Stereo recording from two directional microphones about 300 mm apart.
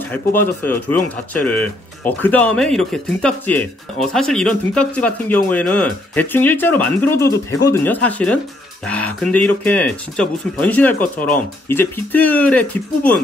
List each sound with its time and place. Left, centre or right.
0.1 s speech: centre